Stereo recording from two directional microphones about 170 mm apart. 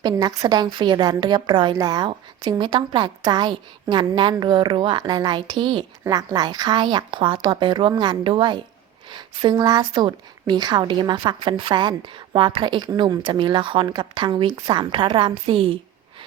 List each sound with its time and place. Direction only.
0.0 s a woman's voice: 25° right (ahead or behind)